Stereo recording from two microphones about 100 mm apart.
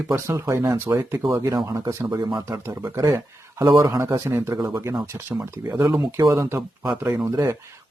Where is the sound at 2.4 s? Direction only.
30° right (ahead or behind).